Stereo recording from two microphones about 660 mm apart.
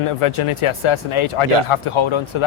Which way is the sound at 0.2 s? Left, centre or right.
Left.